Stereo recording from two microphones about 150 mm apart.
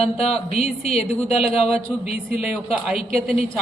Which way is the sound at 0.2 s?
40° left (ahead or behind).